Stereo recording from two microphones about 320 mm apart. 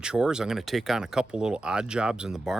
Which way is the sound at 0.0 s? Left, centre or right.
Centre.